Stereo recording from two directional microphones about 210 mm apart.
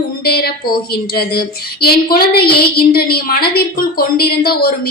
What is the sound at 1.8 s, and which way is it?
A woman's voice, 45° left (ahead or behind).